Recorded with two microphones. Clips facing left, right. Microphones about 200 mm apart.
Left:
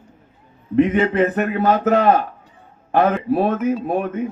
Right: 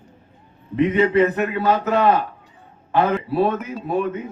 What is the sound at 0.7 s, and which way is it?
A man's voice, 50° left (ahead or behind).